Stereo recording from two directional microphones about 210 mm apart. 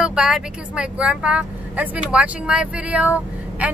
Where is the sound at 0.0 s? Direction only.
5° right (ahead or behind).